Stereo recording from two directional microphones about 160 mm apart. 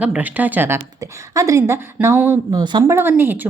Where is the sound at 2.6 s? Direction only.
25° right (ahead or behind).